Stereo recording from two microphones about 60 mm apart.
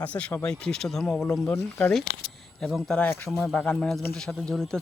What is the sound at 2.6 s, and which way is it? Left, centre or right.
Speech, centre.